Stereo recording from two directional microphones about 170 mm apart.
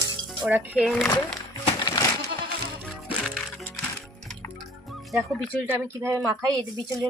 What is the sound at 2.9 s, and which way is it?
Music, centre (ahead or behind).